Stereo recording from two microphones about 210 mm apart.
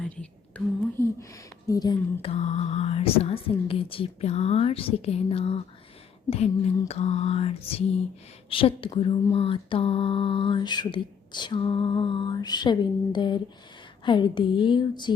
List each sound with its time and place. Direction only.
0.0 s whispering: 5° left (ahead or behind)
1.6 s lullaby: 15° left (ahead or behind)